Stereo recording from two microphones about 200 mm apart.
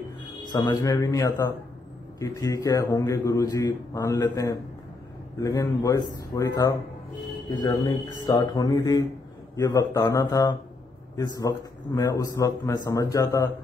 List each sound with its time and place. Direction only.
0.5 s a man's voice: 20° left (ahead or behind)